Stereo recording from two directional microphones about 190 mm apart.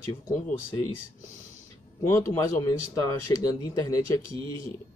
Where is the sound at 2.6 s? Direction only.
20° left (ahead or behind).